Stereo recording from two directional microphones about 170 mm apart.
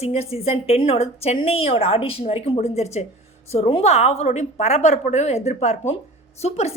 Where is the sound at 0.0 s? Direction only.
35° left (ahead or behind).